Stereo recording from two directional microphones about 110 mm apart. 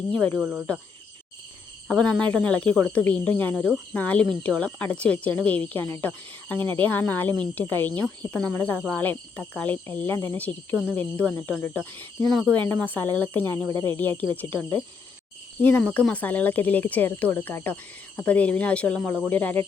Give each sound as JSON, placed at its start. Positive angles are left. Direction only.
{"t": 0.1, "sound": "speech", "side_deg": 15}
{"t": 0.3, "sound": "speech", "side_deg": -5}
{"t": 1.9, "sound": "speech", "side_deg": 10}